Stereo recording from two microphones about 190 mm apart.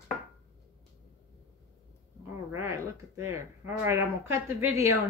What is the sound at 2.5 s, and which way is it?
Speech, 15° right (ahead or behind).